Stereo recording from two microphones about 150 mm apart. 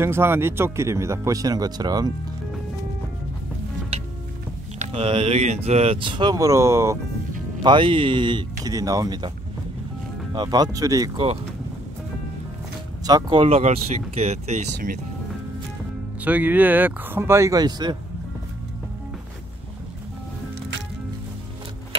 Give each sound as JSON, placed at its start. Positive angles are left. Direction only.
{"t": 0.0, "sound": "speech", "side_deg": -15}
{"t": 4.7, "sound": "a sound", "side_deg": -50}
{"t": 5.0, "sound": "speech", "side_deg": -40}
{"t": 7.6, "sound": "speech", "side_deg": -35}
{"t": 10.3, "sound": "speech", "side_deg": -30}
{"t": 13.0, "sound": "speech", "side_deg": -25}
{"t": 13.4, "sound": "speech", "side_deg": -45}
{"t": 16.3, "sound": "speech", "side_deg": -10}